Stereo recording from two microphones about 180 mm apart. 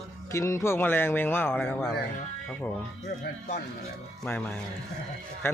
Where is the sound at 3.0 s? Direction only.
45° left (ahead or behind).